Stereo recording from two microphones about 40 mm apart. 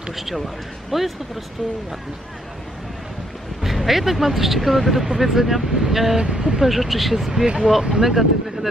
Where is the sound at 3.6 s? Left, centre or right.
Centre.